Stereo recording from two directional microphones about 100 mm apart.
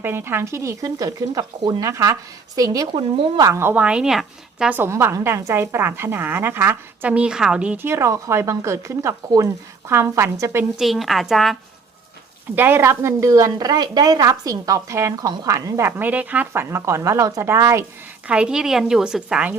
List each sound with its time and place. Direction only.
0.0 s a woman's voice: 20° right (ahead or behind)
3.8 s speech: 10° right (ahead or behind)
4.7 s a woman's voice: 25° right (ahead or behind)
7.1 s speech: 10° right (ahead or behind)
7.8 s a woman's voice: 25° right (ahead or behind)
10.8 s a woman's voice: centre (ahead or behind)
12.5 s a woman's voice: 20° right (ahead or behind)
15.9 s speech: 20° right (ahead or behind)
16.5 s a woman's voice: 25° right (ahead or behind)
18.3 s a woman's voice: 10° right (ahead or behind)